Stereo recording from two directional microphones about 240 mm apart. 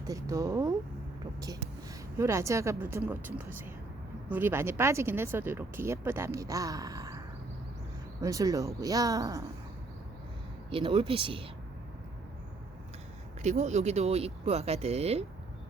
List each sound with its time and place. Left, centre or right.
0.1 s speech: centre
2.1 s speech: centre
8.2 s speech: centre
10.7 s speech: right
13.4 s speech: right